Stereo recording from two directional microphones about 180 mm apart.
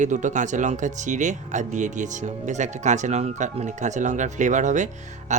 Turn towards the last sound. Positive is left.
turn(degrees=-40)  # may be behind; listen again after turning